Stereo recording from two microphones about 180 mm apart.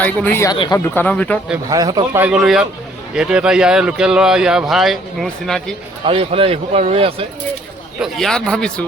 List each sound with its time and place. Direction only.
0.0 s speech: 10° left (ahead or behind)
0.5 s speech: 25° left (ahead or behind)
0.9 s speech: 10° left (ahead or behind)
1.7 s speech: 20° right (ahead or behind)
2.2 s speech: 5° right (ahead or behind)
6.1 s speech: 30° right (ahead or behind)
7.9 s speech: centre (ahead or behind)